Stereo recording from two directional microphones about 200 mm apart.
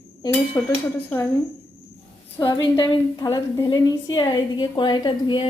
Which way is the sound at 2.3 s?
15° left (ahead or behind).